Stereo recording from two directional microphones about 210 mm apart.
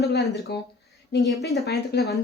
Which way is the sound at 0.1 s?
50° left (ahead or behind).